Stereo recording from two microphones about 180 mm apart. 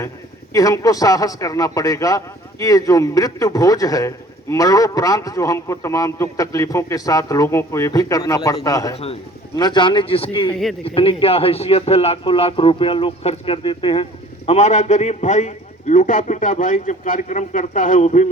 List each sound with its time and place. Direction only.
0.5 s a man's voice: 20° left (ahead or behind)
10.5 s speech: centre (ahead or behind)
10.8 s a man's voice: 30° left (ahead or behind)